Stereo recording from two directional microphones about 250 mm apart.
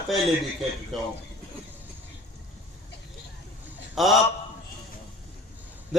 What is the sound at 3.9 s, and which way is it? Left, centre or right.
Speech, centre.